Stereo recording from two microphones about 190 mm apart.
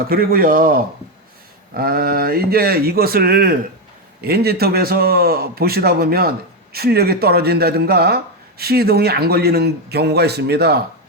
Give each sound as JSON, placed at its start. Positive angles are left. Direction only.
{"t": 0.1, "sound": "a man's voice", "side_deg": -50}